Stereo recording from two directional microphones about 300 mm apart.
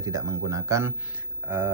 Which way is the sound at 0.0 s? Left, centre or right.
Centre.